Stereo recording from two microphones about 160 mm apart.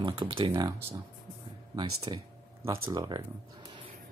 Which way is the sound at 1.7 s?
25° right (ahead or behind).